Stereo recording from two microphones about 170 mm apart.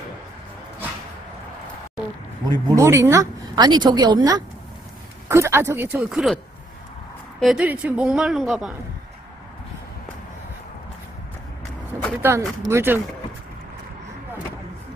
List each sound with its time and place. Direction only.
2.5 s a woman's voice: 15° right (ahead or behind); by 8.7 s centre (ahead or behind)
12.2 s speech: 15° right (ahead or behind)